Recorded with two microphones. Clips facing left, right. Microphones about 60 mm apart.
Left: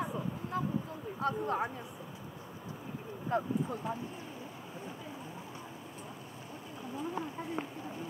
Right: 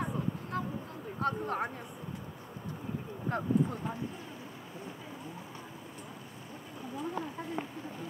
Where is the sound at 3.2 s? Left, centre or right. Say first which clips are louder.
Right 2 dB; centre.